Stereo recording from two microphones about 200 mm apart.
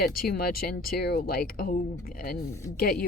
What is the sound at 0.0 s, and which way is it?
Speech, 50° left (ahead or behind).